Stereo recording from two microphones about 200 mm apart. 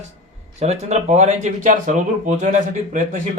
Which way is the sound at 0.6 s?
35° right (ahead or behind).